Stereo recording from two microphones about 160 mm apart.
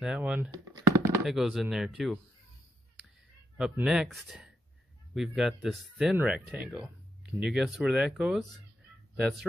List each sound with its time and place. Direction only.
0.0 s speech: 5° right (ahead or behind)
0.5 s a sound: 20° right (ahead or behind)
1.2 s speech: centre (ahead or behind)
3.5 s speech: 5° right (ahead or behind)